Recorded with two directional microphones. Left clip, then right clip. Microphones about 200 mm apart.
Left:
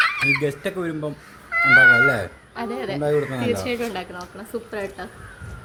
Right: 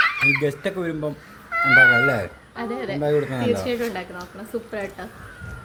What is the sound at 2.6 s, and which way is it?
Speech, 25° left (ahead or behind).